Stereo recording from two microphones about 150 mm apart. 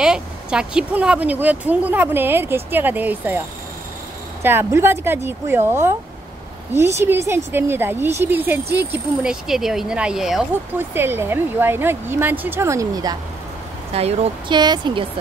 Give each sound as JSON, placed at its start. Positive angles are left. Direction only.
{"t": 0.0, "sound": "speech", "side_deg": -5}
{"t": 10.8, "sound": "speech", "side_deg": -15}
{"t": 13.9, "sound": "speech", "side_deg": -45}
{"t": 14.5, "sound": "speech", "side_deg": -30}